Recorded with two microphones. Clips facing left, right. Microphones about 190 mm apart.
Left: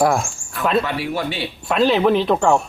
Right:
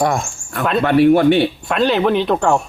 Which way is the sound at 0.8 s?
55° right (ahead or behind).